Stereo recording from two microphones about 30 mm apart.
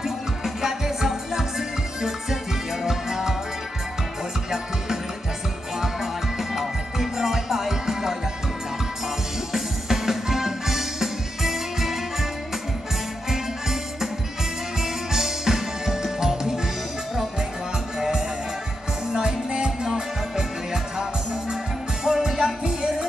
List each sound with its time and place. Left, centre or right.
0.6 s music: centre
6.3 s music: centre
9.5 s music: centre
14.8 s music: centre
17.9 s music: centre
19.1 s music: right